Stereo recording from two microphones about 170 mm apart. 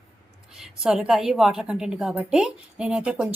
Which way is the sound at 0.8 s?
5° right (ahead or behind).